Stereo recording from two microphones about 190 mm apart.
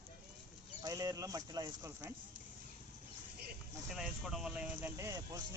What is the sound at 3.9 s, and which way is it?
Speech, centre (ahead or behind).